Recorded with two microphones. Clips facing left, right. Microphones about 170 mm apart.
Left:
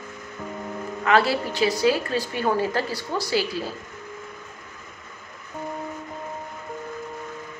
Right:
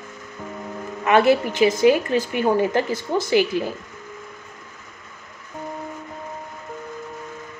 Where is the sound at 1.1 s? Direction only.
20° right (ahead or behind).